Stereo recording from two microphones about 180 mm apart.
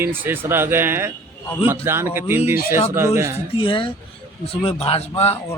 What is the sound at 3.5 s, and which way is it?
Speech, 30° left (ahead or behind).